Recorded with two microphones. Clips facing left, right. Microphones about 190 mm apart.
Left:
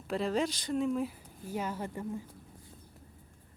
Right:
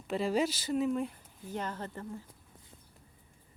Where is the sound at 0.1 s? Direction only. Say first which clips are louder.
Right 1 dB; 5° right (ahead or behind); by 2.2 s 10° left (ahead or behind).